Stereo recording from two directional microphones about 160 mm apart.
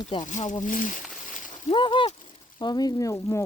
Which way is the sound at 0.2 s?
50° left (ahead or behind).